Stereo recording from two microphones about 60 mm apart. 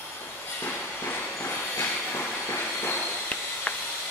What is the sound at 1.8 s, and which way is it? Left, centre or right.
Train, left.